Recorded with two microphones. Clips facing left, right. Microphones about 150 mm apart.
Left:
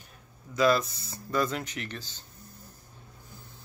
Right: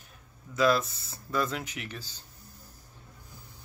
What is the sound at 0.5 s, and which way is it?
Speech, centre (ahead or behind).